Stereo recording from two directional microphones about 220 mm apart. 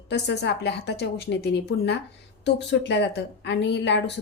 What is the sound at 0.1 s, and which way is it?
A woman's voice, 50° left (ahead or behind).